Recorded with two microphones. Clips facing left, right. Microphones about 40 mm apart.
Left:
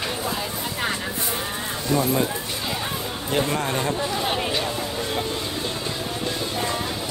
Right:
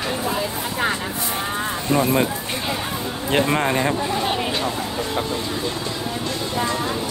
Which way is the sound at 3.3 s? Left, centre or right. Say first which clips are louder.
Right 5 dB; right.